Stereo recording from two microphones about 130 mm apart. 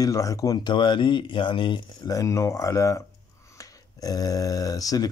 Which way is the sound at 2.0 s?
25° left (ahead or behind).